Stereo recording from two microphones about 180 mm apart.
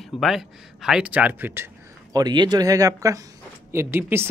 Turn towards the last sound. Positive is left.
turn(degrees=-10)  # may be behind; listen again after turning